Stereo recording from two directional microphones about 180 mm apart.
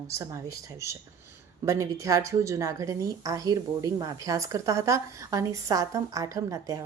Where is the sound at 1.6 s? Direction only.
15° right (ahead or behind).